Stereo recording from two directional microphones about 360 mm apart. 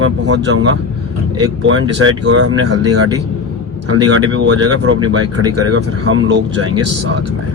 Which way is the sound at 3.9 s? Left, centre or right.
Right.